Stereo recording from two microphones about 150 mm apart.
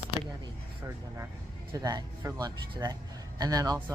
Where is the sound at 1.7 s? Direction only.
25° right (ahead or behind).